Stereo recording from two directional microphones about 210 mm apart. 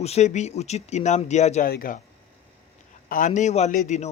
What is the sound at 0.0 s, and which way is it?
Speech, 30° left (ahead or behind).